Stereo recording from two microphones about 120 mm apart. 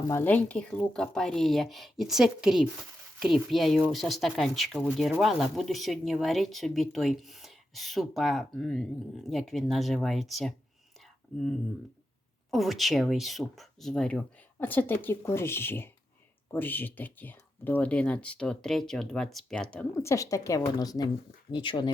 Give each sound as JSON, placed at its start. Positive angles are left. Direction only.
{"t": 0.1, "sound": "speech", "side_deg": 15}
{"t": 20.0, "sound": "a woman's voice", "side_deg": 25}